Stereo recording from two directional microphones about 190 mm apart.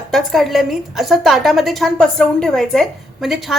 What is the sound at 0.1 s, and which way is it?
A woman's voice, centre (ahead or behind).